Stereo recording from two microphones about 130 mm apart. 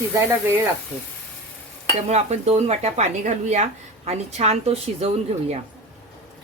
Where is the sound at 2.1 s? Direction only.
60° right (ahead or behind).